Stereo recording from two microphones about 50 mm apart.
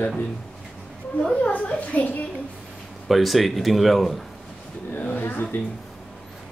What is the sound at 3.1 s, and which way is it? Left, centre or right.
Speech, centre.